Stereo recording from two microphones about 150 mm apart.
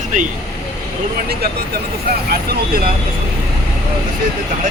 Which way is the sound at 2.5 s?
75° right (ahead or behind).